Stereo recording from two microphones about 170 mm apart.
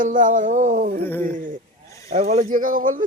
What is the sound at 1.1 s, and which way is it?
Mechanisms, 10° left (ahead or behind).